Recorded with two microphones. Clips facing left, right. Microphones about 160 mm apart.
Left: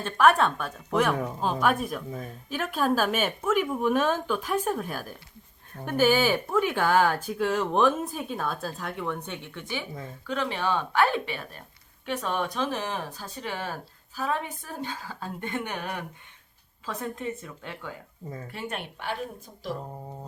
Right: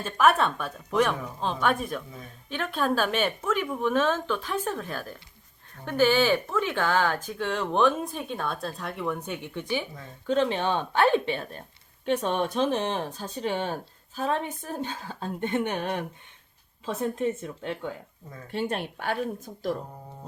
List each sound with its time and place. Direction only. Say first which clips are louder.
0.0 s speech: left 1 dB; centre (ahead or behind); by 17.9 s 25° right (ahead or behind)